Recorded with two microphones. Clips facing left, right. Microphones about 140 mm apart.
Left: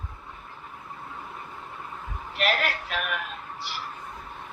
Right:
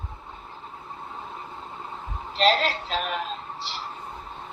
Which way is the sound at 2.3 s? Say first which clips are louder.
Right 5 dB; 30° right (ahead or behind).